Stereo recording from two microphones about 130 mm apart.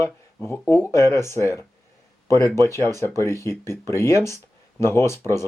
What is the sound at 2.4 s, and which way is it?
Speech, 25° right (ahead or behind).